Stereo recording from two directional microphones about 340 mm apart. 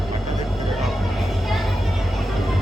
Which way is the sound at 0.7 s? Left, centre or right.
Centre.